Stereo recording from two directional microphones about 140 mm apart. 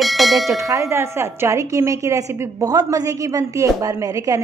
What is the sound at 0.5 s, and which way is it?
A woman's voice, 20° right (ahead or behind).